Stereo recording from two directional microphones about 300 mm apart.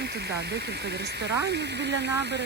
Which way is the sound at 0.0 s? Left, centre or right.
Right.